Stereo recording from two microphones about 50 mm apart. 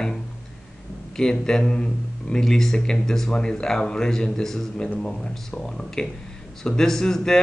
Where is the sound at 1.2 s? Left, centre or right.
Centre.